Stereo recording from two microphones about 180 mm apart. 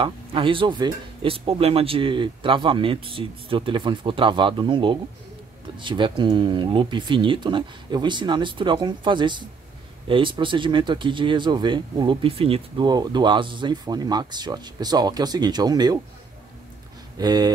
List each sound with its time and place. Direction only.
0.0 s speech: 30° right (ahead or behind)
17.2 s speech: 20° right (ahead or behind)